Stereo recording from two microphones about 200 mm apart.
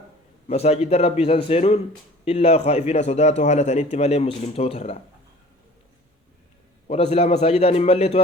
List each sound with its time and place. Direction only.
0.4 s a man's voice: 30° left (ahead or behind)
6.8 s a man's voice: 30° left (ahead or behind)